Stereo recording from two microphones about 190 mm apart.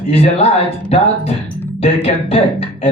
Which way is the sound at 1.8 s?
30° left (ahead or behind).